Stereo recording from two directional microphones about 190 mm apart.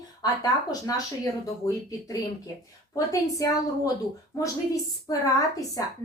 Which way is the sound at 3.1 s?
20° left (ahead or behind).